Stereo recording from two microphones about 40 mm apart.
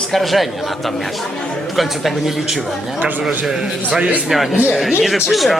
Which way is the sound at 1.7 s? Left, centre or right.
Centre.